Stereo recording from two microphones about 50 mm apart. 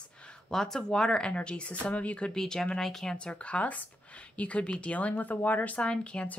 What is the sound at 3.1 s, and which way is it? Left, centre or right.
Speech, left.